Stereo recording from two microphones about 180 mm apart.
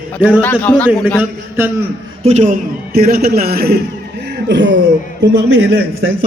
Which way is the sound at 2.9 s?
55° right (ahead or behind).